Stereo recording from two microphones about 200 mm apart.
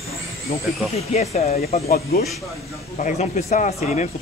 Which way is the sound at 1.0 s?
30° left (ahead or behind).